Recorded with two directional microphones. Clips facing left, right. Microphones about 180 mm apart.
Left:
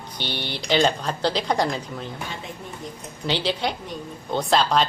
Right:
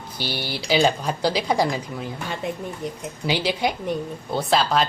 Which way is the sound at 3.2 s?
10° right (ahead or behind).